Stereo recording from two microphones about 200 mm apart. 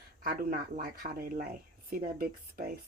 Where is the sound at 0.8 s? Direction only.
45° right (ahead or behind).